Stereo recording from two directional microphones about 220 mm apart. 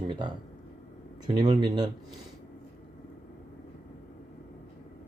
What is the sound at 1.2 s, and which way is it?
Speech, 20° right (ahead or behind).